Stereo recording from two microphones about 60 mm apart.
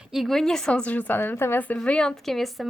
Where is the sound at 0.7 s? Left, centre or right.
Left.